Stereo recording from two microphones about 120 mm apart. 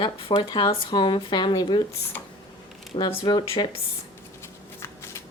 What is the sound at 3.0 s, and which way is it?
Speech, 40° left (ahead or behind).